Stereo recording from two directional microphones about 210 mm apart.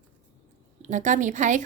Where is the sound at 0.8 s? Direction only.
35° right (ahead or behind).